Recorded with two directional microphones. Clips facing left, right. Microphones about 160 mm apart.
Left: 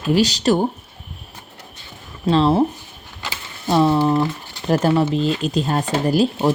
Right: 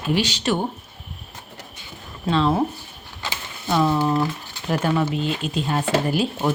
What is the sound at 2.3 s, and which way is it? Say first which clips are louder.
Speech: left 4 dB; 35° left (ahead or behind).